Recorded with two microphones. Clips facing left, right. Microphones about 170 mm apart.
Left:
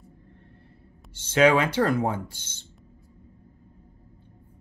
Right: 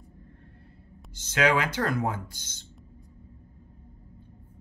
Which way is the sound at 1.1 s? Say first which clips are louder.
Left 5 dB; 30° left (ahead or behind).